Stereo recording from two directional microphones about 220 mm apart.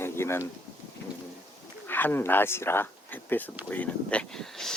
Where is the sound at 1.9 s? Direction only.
10° left (ahead or behind).